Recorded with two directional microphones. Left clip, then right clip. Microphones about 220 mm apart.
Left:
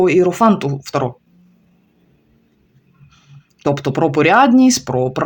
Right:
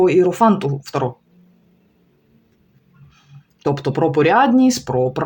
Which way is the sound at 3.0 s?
20° left (ahead or behind).